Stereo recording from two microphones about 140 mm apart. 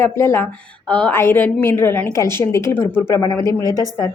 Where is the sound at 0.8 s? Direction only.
10° left (ahead or behind).